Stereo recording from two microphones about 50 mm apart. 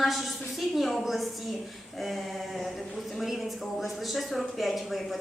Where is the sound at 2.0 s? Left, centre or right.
Centre.